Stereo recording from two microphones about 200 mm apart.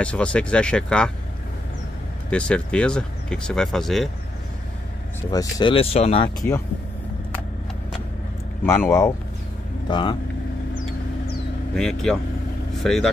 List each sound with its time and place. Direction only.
0.0 s speech: 5° left (ahead or behind)
2.3 s speech: 5° left (ahead or behind)
5.3 s speech: 20° left (ahead or behind)
8.6 s speech: 10° left (ahead or behind)
9.8 s speech: 25° left (ahead or behind)
11.7 s speech: centre (ahead or behind)